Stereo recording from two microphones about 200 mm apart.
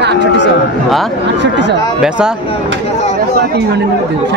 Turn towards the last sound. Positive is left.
turn(degrees=-55)  # may be behind; listen again after turning